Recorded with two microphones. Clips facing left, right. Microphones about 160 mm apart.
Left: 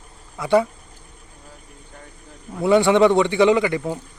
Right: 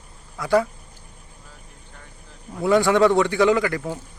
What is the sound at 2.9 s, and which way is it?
Speech, 20° left (ahead or behind).